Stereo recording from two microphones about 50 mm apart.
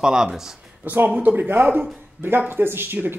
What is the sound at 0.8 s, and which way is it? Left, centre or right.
Speech, right.